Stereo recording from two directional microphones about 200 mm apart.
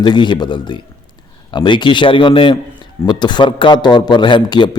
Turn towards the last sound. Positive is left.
turn(degrees=25)  # may be behind; listen again after turning